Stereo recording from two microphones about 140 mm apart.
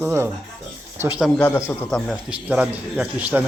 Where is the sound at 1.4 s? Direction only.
15° left (ahead or behind).